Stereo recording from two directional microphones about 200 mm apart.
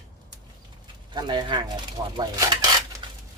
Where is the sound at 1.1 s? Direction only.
20° right (ahead or behind).